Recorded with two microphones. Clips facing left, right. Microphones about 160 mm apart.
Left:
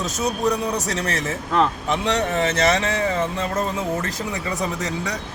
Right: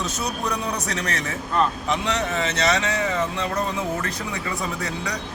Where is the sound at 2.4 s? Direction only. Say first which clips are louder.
Left 3 dB; 30° left (ahead or behind).